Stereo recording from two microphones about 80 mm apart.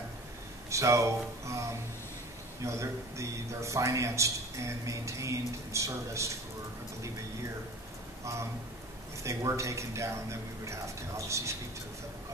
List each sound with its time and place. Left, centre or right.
0.7 s a man's voice: right
9.2 s a man's voice: right